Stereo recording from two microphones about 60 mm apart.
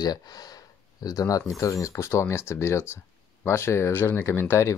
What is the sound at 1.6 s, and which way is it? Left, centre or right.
Speech, left.